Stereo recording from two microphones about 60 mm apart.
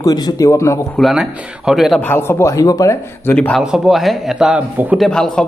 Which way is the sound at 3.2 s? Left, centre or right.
Left.